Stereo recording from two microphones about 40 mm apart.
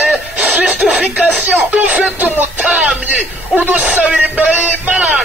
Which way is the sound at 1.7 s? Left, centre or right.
Right.